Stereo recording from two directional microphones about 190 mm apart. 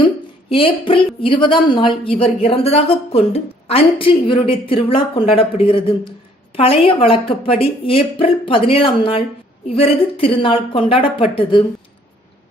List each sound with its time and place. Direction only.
0.5 s a woman's voice: 30° left (ahead or behind)